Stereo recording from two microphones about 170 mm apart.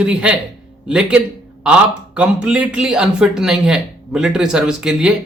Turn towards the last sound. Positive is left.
turn(degrees=-5)  # may be behind; listen again after turning